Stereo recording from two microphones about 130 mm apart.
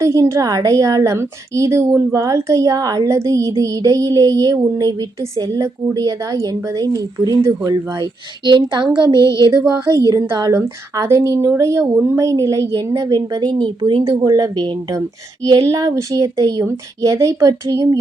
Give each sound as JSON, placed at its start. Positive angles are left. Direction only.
{"t": 0.0, "sound": "speech", "side_deg": -25}
{"t": 8.4, "sound": "speech", "side_deg": -35}